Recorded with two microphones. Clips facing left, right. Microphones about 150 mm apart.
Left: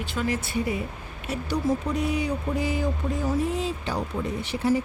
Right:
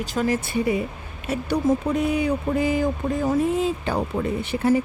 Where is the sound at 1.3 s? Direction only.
60° right (ahead or behind).